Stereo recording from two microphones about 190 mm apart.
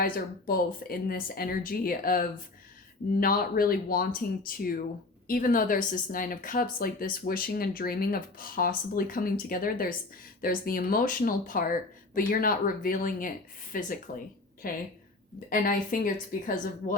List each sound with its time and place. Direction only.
0.0 s speech: 50° left (ahead or behind)